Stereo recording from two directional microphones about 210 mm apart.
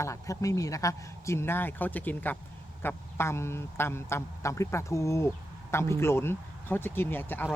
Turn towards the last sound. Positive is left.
turn(degrees=10)  # may be behind; listen again after turning